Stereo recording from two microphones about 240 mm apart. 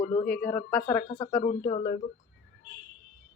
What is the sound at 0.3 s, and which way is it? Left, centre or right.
Speech, centre.